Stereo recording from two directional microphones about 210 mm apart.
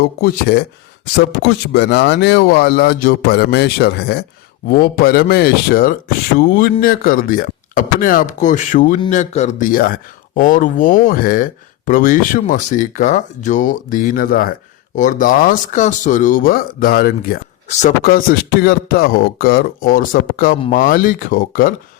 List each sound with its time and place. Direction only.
0.2 s speech: 50° left (ahead or behind)